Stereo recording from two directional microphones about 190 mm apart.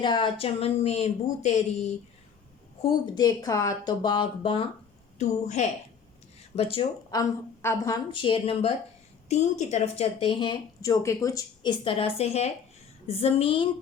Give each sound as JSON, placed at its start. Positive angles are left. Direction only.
{"t": 0.0, "sound": "speech", "side_deg": 25}
{"t": 2.8, "sound": "a woman's voice", "side_deg": 20}
{"t": 5.1, "sound": "a woman's voice", "side_deg": 35}
{"t": 7.1, "sound": "a woman's voice", "side_deg": 15}
{"t": 8.1, "sound": "a woman's voice", "side_deg": 25}